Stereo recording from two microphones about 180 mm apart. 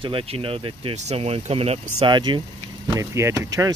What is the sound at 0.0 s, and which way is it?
Speech, 30° right (ahead or behind).